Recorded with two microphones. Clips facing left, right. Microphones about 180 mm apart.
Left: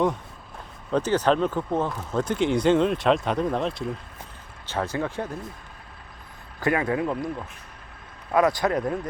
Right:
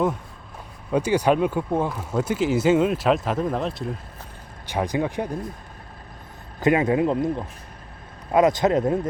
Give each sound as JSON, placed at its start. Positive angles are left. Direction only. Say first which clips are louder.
{"t": 0.9, "sound": "speech", "louder": "right 2 dB", "side_deg": -10}
{"t": 4.6, "sound": "speech", "louder": "right 3 dB", "side_deg": -15}
{"t": 6.6, "sound": "speech", "louder": "right 5 dB", "side_deg": -20}